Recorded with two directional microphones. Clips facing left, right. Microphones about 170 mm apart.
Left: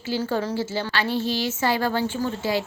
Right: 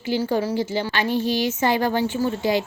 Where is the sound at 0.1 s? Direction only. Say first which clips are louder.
Right 3 dB; 15° right (ahead or behind).